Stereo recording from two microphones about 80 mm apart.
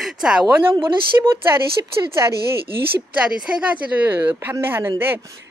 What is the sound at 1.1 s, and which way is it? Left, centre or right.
Speech, right.